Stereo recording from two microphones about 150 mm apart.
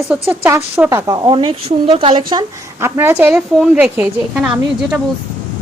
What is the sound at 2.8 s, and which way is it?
A woman's voice, 15° right (ahead or behind).